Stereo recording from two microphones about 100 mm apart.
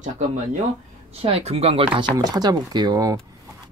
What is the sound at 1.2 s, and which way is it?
Speech, 85° right.